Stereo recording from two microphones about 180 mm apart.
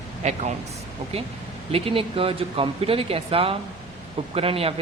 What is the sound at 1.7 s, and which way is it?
Speech, 30° right (ahead or behind).